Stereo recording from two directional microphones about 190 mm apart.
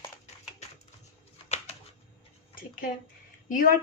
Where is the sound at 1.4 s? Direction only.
35° left (ahead or behind).